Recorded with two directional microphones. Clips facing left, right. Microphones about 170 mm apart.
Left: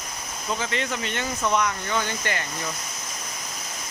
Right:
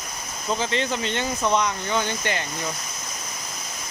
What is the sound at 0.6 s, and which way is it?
Speech, 30° right (ahead or behind).